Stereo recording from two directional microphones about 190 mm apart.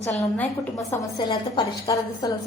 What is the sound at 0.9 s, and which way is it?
A woman's voice, 20° left (ahead or behind).